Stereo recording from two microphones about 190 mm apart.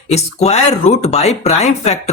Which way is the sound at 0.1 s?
35° left (ahead or behind).